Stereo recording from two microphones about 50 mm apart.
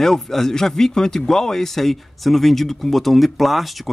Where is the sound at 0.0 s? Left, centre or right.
Centre.